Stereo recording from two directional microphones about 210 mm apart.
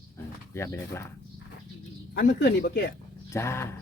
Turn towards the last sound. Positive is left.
turn(degrees=10)  # may be behind; listen again after turning